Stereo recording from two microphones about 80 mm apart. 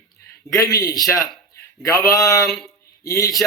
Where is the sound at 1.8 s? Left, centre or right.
Left.